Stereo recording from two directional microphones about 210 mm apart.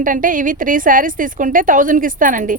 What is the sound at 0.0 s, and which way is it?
A woman's voice, 40° right (ahead or behind).